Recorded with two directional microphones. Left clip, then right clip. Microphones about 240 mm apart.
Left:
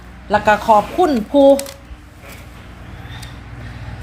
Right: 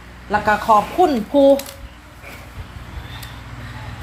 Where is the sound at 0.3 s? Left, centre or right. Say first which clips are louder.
Left 3 dB; centre.